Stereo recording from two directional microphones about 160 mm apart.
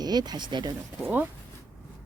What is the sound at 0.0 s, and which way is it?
Speech, 25° right (ahead or behind).